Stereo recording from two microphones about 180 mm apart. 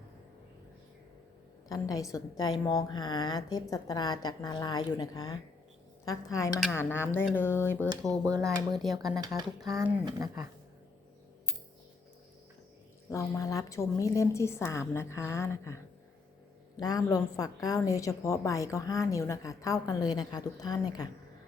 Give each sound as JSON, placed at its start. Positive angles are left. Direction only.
{"t": 1.6, "sound": "a woman's voice", "side_deg": 20}
{"t": 6.7, "sound": "a woman's voice", "side_deg": 15}
{"t": 8.2, "sound": "speech", "side_deg": -15}
{"t": 13.1, "sound": "a woman's voice", "side_deg": 15}
{"t": 16.8, "sound": "a woman's voice", "side_deg": 20}